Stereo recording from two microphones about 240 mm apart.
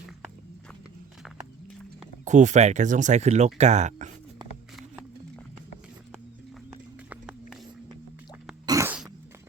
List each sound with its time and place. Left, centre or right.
2.0 s speech: right
7.1 s a sound: centre
8.6 s cough: centre